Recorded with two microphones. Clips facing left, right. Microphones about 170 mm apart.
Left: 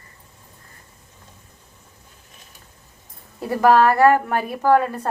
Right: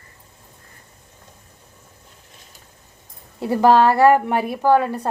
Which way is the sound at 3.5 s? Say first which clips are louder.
Right 1 dB; 25° right (ahead or behind).